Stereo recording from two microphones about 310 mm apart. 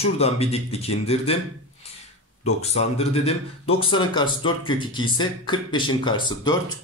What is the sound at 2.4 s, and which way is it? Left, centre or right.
Speech, left.